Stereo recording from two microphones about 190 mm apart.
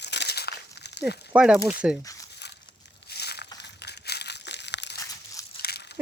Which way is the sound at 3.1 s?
60° left (ahead or behind).